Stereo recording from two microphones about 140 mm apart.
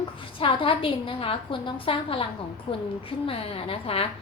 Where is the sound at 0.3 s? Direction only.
40° left (ahead or behind).